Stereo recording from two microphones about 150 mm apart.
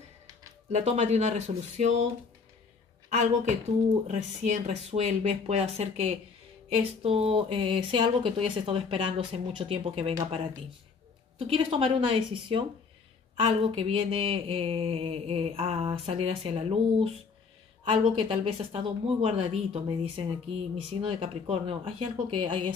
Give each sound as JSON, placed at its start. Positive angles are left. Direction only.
{"t": 0.7, "sound": "speech", "side_deg": -50}
{"t": 4.1, "sound": "speech", "side_deg": -50}
{"t": 11.3, "sound": "speech", "side_deg": -40}